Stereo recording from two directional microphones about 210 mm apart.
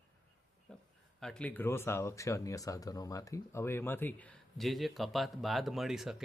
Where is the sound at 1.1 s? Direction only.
5° left (ahead or behind).